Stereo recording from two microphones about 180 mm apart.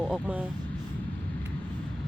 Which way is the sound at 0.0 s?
5° right (ahead or behind).